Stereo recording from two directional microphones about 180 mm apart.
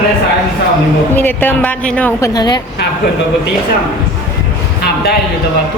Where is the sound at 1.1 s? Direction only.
10° left (ahead or behind).